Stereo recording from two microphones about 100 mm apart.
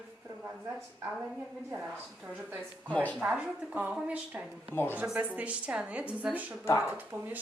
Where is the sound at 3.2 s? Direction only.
15° right (ahead or behind).